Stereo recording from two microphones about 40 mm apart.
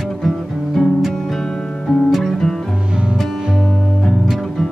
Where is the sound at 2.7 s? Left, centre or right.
Right.